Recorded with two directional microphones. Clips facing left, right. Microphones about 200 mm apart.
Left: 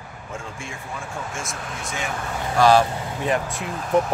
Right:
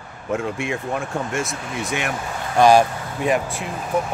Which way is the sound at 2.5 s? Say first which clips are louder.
Right 3 dB; 15° right (ahead or behind).